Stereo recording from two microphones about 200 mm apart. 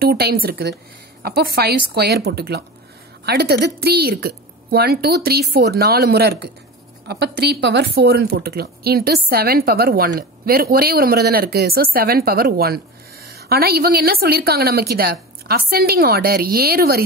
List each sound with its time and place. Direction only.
0.0 s speech: 50° right (ahead or behind)